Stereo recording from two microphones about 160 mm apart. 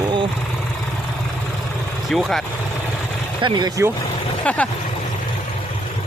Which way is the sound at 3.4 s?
25° right (ahead or behind).